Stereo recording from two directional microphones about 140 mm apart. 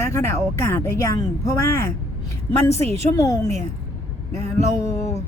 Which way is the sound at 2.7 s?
45° right (ahead or behind).